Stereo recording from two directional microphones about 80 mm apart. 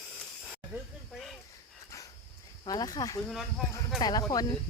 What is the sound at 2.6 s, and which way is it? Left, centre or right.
Speech, left.